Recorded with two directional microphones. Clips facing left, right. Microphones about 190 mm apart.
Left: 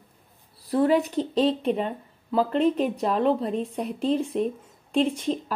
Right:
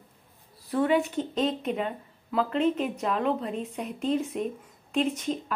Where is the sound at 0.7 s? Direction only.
35° left (ahead or behind).